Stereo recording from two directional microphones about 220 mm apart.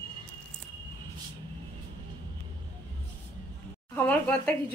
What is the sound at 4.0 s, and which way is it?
Speech, 10° left (ahead or behind).